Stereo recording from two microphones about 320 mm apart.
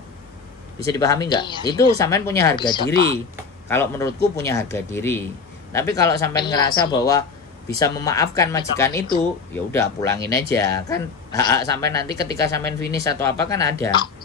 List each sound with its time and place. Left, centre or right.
0.8 s speech: centre
11.9 s speech: right
12.4 s speech: centre